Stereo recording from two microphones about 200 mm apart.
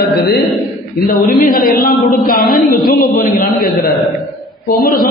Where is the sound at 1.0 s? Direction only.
45° left (ahead or behind).